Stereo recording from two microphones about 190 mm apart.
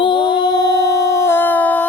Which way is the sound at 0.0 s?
25° left (ahead or behind).